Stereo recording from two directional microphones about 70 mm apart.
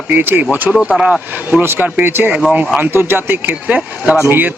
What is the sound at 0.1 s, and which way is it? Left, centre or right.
Speech, right.